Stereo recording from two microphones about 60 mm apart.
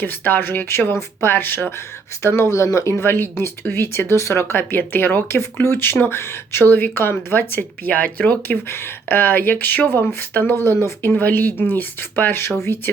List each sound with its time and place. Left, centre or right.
0.0 s speech: left
2.2 s speech: left
4.1 s speech: left
8.6 s speech: left